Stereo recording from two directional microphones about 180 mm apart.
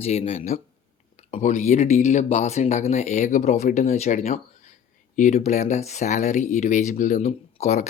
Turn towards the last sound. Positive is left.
turn(degrees=40)  # may be behind; listen again after turning